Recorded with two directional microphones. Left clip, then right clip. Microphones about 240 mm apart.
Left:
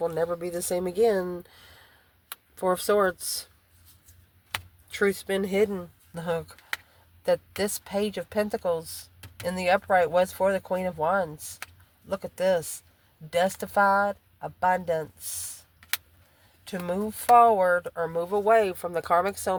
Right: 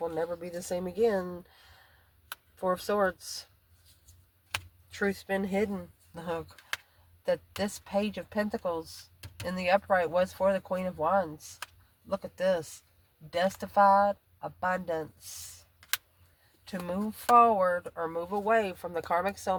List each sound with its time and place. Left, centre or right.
0.0 s speech: left
4.9 s speech: left
16.6 s speech: left